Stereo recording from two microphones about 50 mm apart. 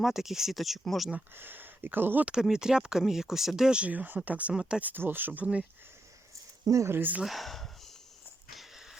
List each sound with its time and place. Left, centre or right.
0.0 s speech: centre
1.4 s speech: right
2.2 s speech: centre
3.8 s speech: right
4.5 s speech: centre
4.8 s speech: right
6.9 s speech: right
7.3 s speech: centre
8.5 s a sound: centre